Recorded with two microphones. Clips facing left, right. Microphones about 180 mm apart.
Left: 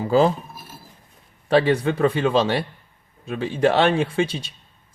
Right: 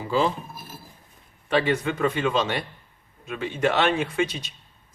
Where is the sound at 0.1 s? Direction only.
45° left (ahead or behind).